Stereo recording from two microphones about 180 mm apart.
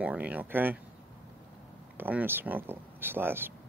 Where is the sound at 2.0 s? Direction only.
10° right (ahead or behind).